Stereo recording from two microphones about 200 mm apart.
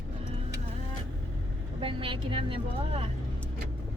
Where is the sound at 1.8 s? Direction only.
25° right (ahead or behind).